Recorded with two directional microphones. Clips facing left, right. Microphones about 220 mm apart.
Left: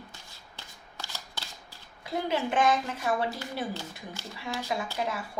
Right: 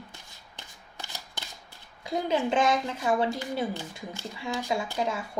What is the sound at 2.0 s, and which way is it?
A woman's voice, 25° right (ahead or behind).